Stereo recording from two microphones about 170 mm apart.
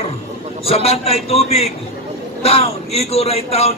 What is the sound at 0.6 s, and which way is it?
Music, 35° left (ahead or behind).